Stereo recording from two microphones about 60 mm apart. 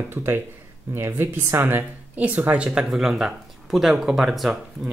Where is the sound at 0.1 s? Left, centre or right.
Right.